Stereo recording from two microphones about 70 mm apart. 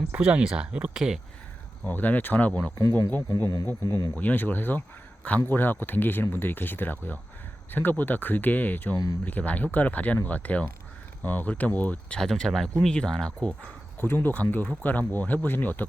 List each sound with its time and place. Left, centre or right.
0.1 s speech: right
1.9 s speech: left
3.2 s speech: left
4.2 s speech: left
12.2 s speech: centre
13.6 s speech: left